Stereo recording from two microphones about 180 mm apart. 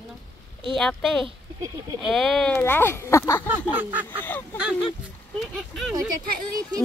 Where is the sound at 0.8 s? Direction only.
Centre (ahead or behind).